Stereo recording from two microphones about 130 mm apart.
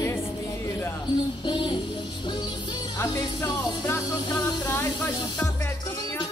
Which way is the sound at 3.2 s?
30° left (ahead or behind).